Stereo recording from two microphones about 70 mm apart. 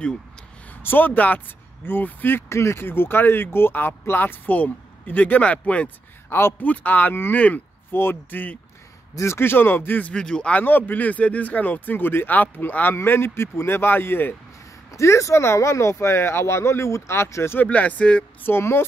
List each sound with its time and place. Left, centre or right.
0.7 s speech: left
2.5 s speech: left; by 5.9 s centre
6.2 s a man's voice: left
6.6 s speech: left
7.9 s speech: left
9.1 s speech: left
10.1 s speech: centre
10.6 s speech: left
14.9 s speech: left
17.6 s speech: left
18.5 s speech: left